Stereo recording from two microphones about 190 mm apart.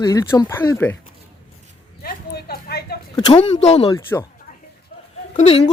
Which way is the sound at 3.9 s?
15° left (ahead or behind).